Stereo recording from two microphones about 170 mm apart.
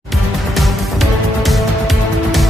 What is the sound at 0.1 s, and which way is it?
Music, centre (ahead or behind).